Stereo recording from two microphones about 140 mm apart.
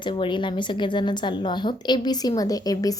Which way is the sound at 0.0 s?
35° left (ahead or behind).